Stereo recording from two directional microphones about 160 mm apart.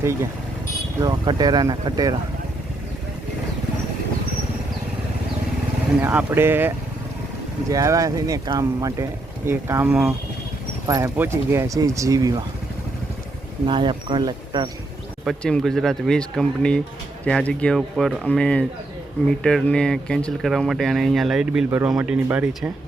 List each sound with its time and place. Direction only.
0.0 s speech: 15° right (ahead or behind)
6.0 s speech: 15° right (ahead or behind)
10.8 s speech: 20° right (ahead or behind)
13.7 s speech: 30° right (ahead or behind)
15.2 s speech: centre (ahead or behind)